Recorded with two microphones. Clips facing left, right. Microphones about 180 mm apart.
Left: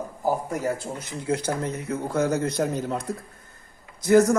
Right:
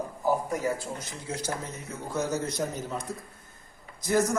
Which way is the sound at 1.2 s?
60° left (ahead or behind).